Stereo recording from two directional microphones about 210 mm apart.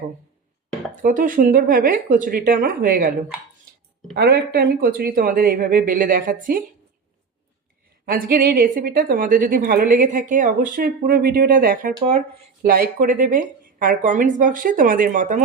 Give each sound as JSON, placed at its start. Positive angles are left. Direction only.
{"t": 1.0, "sound": "speech", "side_deg": -40}
{"t": 4.1, "sound": "a woman's voice", "side_deg": -50}
{"t": 8.0, "sound": "a woman's voice", "side_deg": -45}